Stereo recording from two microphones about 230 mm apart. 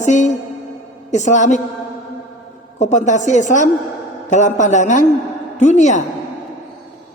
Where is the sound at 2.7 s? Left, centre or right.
Left.